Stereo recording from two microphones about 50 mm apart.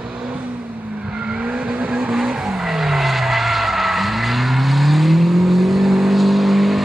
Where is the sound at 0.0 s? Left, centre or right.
Centre.